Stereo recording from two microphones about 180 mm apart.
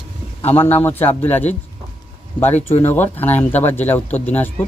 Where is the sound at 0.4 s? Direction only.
10° left (ahead or behind).